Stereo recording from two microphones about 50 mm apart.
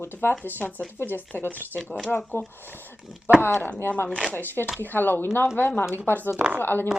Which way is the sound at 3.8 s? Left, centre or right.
Left.